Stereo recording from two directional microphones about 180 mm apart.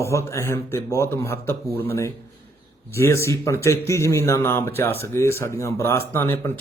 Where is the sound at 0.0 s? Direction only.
15° left (ahead or behind).